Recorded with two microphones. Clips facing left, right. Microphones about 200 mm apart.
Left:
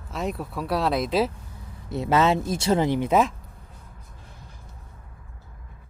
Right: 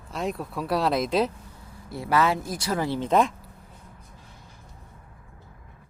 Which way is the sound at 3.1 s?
Centre (ahead or behind).